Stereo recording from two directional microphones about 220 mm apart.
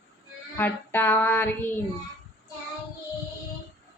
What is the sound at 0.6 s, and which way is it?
Female singing, 10° left (ahead or behind).